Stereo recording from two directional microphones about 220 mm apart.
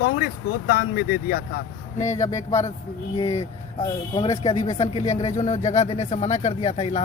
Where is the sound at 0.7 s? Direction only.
45° left (ahead or behind).